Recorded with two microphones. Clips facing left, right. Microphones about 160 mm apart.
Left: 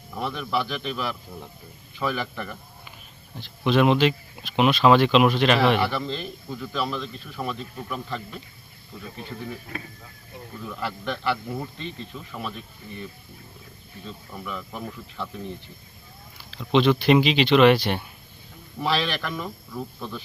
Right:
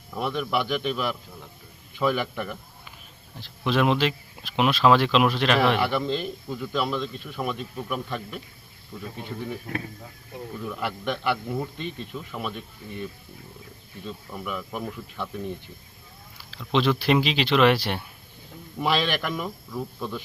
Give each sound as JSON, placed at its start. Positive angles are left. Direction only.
{"t": 0.2, "sound": "speech", "side_deg": -15}
{"t": 3.3, "sound": "speech", "side_deg": 0}
{"t": 5.9, "sound": "speech", "side_deg": -15}
{"t": 10.7, "sound": "speech", "side_deg": -15}
{"t": 14.3, "sound": "speech", "side_deg": -10}
{"t": 16.4, "sound": "speech", "side_deg": 0}
{"t": 18.8, "sound": "speech", "side_deg": -10}